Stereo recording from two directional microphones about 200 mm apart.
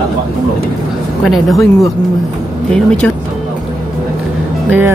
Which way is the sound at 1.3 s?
Centre (ahead or behind).